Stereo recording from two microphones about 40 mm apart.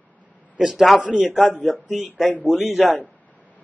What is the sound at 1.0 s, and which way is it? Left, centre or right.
A man's voice, centre.